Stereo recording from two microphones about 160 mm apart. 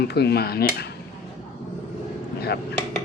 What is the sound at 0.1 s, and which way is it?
Dishes, 90° left.